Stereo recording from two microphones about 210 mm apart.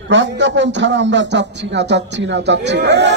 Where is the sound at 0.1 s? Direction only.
60° right (ahead or behind).